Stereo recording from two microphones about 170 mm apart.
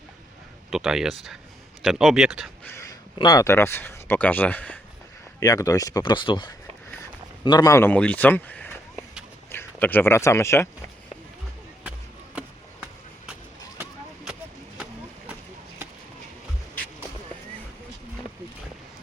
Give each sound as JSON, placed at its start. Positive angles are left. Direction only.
{"t": 0.7, "sound": "speech", "side_deg": -5}
{"t": 3.2, "sound": "speech", "side_deg": 20}
{"t": 5.4, "sound": "speech", "side_deg": 20}
{"t": 11.9, "sound": "a sound", "side_deg": -5}